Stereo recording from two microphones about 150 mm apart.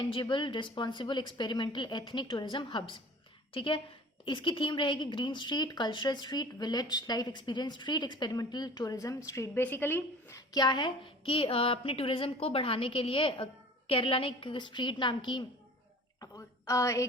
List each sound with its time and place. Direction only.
0.0 s a woman's voice: 35° left (ahead or behind)
16.2 s a woman's voice: 20° left (ahead or behind)